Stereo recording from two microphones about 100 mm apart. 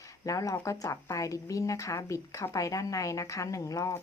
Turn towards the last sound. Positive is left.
turn(degrees=35)  # may be behind; listen again after turning